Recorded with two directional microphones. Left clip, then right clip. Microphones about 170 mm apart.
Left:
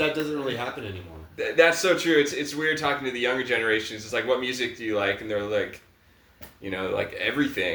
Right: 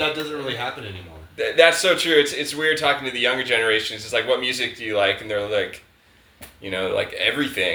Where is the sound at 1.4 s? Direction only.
15° left (ahead or behind).